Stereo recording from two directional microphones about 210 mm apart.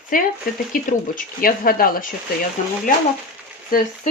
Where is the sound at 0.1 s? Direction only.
40° left (ahead or behind).